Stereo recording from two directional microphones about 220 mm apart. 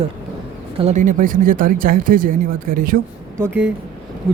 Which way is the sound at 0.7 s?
30° right (ahead or behind).